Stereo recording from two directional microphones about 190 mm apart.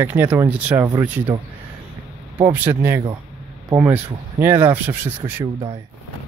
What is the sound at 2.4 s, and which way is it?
Speech, 10° right (ahead or behind).